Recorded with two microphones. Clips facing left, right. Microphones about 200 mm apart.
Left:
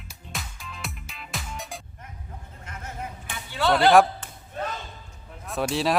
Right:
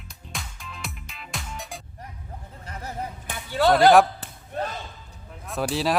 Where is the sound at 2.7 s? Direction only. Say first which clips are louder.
Right 3 dB; 40° right (ahead or behind).